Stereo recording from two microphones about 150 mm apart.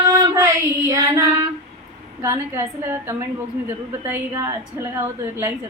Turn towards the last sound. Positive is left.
turn(degrees=-20)  # may be behind; listen again after turning